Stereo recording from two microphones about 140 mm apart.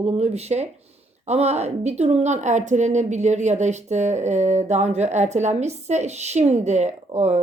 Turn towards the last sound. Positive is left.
turn(degrees=-55)  # may be behind; listen again after turning